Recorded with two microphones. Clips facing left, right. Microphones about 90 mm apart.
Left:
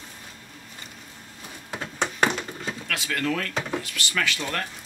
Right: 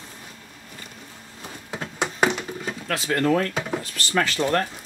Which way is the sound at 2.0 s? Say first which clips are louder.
Right 2 dB; 10° right (ahead or behind).